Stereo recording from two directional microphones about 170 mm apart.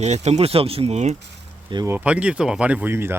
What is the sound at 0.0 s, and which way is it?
Speech, 40° right (ahead or behind).